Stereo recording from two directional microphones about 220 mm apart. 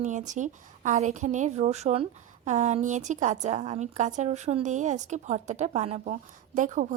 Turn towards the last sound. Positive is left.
turn(degrees=-35)  # may be behind; listen again after turning